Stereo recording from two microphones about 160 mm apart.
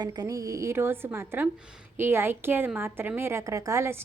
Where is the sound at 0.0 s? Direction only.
25° right (ahead or behind).